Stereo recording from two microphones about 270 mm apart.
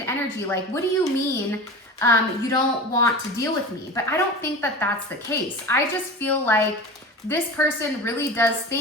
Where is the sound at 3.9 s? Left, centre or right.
Centre.